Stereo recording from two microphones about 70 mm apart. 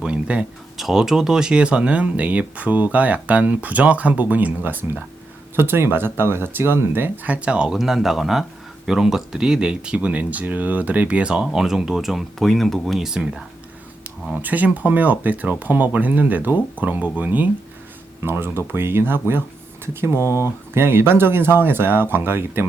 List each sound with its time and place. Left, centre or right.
0.0 s speech: centre
0.8 s speech: centre
13.0 s speech: centre
14.3 s speech: right